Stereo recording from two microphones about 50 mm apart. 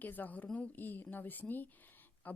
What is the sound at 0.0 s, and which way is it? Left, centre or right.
A woman's voice, left.